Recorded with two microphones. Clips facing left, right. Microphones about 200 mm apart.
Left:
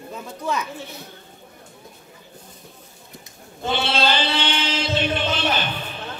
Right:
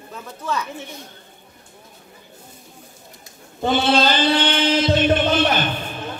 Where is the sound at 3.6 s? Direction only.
45° right (ahead or behind).